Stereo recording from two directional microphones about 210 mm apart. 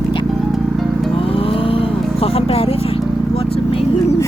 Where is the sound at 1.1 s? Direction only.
25° left (ahead or behind).